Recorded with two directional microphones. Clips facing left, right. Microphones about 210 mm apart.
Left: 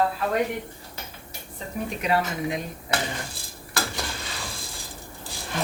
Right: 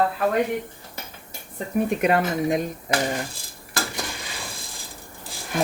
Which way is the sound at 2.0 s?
50° right (ahead or behind).